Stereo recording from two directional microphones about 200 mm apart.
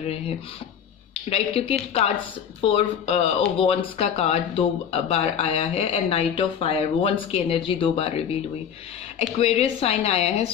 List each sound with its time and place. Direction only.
1.1 s speech: 30° left (ahead or behind)